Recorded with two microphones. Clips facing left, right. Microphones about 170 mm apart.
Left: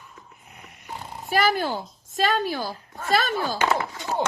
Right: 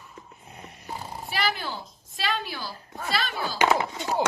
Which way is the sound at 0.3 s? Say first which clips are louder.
Right 3 dB; 30° right (ahead or behind).